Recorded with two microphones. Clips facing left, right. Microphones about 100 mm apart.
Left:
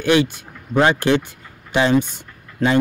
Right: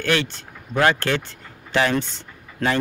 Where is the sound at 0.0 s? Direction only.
15° left (ahead or behind).